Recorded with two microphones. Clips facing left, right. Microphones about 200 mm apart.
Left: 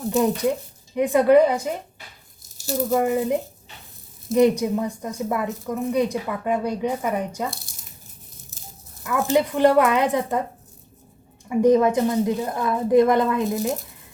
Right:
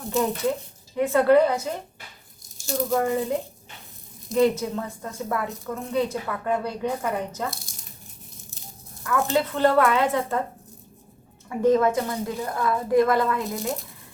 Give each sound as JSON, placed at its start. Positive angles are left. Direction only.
{"t": 0.1, "sound": "a woman's voice", "side_deg": 15}
{"t": 2.9, "sound": "a woman's voice", "side_deg": 15}
{"t": 4.4, "sound": "a woman's voice", "side_deg": 15}
{"t": 9.0, "sound": "a woman's voice", "side_deg": 15}
{"t": 11.4, "sound": "a woman's voice", "side_deg": 15}